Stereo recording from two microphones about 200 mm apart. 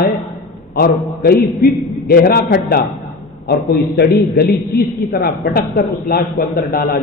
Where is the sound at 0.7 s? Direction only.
50° left (ahead or behind).